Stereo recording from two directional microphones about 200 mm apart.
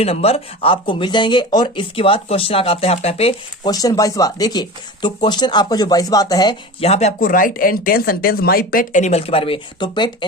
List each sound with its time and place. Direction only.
0.0 s speech: 30° left (ahead or behind)